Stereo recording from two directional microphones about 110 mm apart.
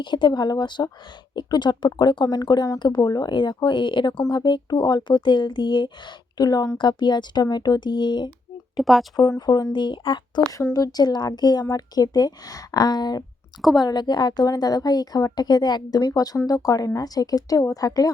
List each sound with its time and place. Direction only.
0.0 s a woman's voice: 45° left (ahead or behind)
8.7 s speech: centre (ahead or behind)
9.1 s a woman's voice: 35° left (ahead or behind)
10.5 s speech: 30° left (ahead or behind)
10.9 s a woman's voice: 40° left (ahead or behind)